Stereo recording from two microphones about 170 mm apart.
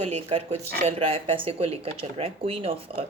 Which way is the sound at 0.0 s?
40° right (ahead or behind).